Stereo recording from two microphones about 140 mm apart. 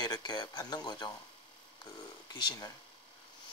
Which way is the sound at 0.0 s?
30° left (ahead or behind).